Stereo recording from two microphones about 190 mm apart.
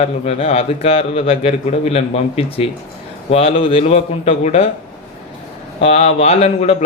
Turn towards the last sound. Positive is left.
turn(degrees=35)  # may be behind; listen again after turning